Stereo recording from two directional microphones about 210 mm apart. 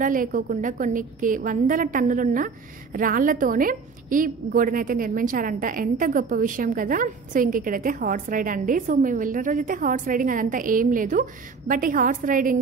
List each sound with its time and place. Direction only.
0.0 s a woman's voice: 40° right (ahead or behind)